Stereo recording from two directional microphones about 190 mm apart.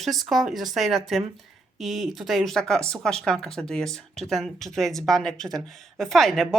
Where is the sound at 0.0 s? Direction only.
Centre (ahead or behind).